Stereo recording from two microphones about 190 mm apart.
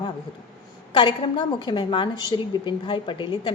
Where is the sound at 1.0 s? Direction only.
25° left (ahead or behind).